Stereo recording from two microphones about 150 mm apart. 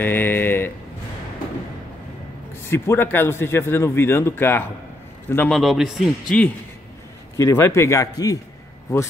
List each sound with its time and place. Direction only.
0.0 s speech: 15° left (ahead or behind)
2.6 s speech: 15° left (ahead or behind)
5.5 s a man's voice: centre (ahead or behind)
7.3 s speech: 15° left (ahead or behind)